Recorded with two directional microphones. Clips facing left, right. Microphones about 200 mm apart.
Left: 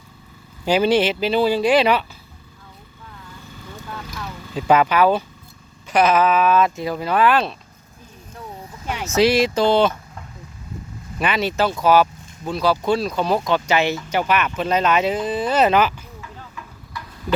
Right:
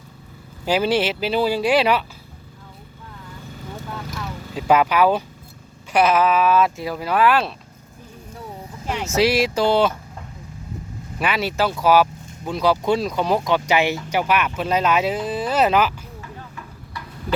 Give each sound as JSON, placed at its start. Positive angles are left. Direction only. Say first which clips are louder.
{"t": 0.6, "sound": "speech", "louder": "left 3 dB", "side_deg": -5}
{"t": 4.2, "sound": "speech", "louder": "left 1 dB", "side_deg": -5}
{"t": 9.1, "sound": "speech", "louder": "left 2 dB", "side_deg": -5}
{"t": 11.2, "sound": "speech", "louder": "left 1 dB", "side_deg": -5}